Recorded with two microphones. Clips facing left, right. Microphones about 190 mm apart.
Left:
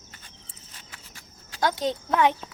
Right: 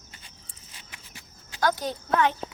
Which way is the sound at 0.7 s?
10° right (ahead or behind).